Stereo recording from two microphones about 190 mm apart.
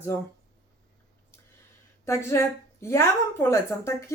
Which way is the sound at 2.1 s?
15° left (ahead or behind).